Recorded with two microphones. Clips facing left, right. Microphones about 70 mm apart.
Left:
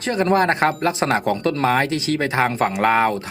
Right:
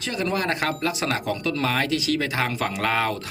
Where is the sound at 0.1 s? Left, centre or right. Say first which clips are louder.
Left 8 dB; left.